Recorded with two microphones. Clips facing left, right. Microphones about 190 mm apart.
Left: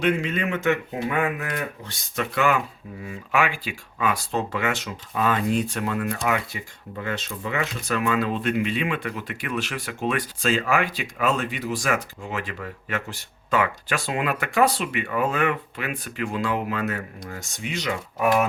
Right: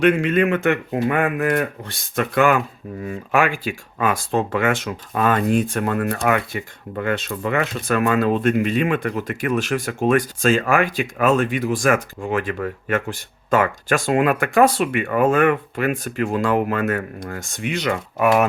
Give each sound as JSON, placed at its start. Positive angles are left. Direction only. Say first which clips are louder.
{"t": 0.0, "sound": "a man's voice", "louder": "right 7 dB", "side_deg": -60}